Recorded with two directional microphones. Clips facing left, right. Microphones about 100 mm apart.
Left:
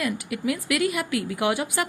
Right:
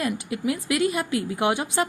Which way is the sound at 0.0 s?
25° right (ahead or behind).